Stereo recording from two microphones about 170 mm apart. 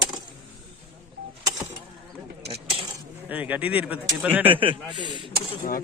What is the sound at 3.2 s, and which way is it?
Speech, 10° right (ahead or behind).